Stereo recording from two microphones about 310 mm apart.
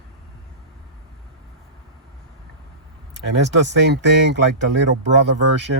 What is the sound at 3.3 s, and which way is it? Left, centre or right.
Speech, right.